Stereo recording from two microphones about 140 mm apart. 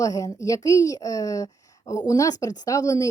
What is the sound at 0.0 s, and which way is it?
A woman's voice, 25° left (ahead or behind).